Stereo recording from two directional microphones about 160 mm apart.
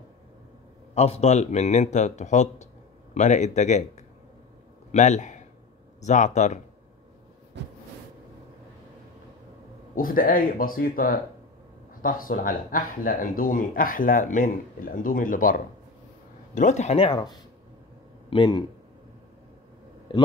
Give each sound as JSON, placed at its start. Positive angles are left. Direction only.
{"t": 0.9, "sound": "speech", "side_deg": 40}
{"t": 7.5, "sound": "a sound", "side_deg": -90}
{"t": 9.9, "sound": "speech", "side_deg": 60}
{"t": 16.5, "sound": "speech", "side_deg": 50}
{"t": 18.3, "sound": "speech", "side_deg": 30}
{"t": 20.1, "sound": "a man's voice", "side_deg": 30}